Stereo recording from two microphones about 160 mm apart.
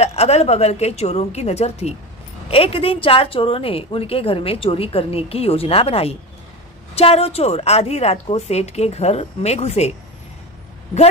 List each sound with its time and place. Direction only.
0.0 s a woman's voice: 40° left (ahead or behind)